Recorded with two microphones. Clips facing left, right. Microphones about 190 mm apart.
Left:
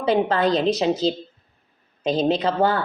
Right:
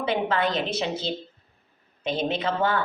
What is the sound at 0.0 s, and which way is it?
Speech, 35° left (ahead or behind).